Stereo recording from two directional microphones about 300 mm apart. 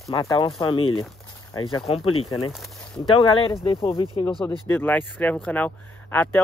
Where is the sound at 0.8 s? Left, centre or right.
Left.